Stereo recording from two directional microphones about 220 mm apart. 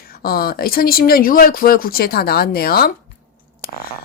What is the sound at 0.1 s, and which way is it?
A woman's voice, 45° left (ahead or behind).